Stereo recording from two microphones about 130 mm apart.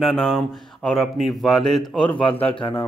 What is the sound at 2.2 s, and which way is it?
Speech, 45° left (ahead or behind).